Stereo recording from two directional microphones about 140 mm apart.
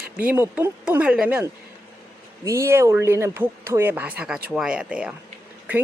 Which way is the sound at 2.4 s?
20° right (ahead or behind).